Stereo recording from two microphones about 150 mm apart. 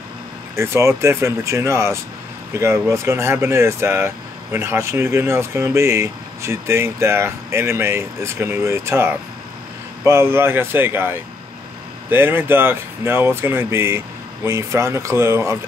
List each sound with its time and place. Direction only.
0.6 s speech: 20° right (ahead or behind)